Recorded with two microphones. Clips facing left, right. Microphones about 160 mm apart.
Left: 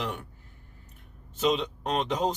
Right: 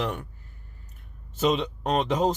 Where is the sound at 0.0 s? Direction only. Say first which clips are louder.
Right 4 dB; 45° right (ahead or behind).